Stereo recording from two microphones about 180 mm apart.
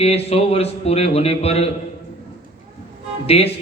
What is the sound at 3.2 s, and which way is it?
Speech, 35° left (ahead or behind).